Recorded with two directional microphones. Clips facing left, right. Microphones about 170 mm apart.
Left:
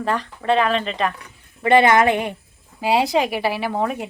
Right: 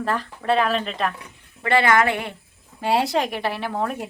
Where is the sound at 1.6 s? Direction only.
20° left (ahead or behind).